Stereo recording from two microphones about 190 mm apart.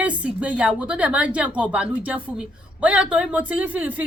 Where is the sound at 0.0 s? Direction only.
5° right (ahead or behind).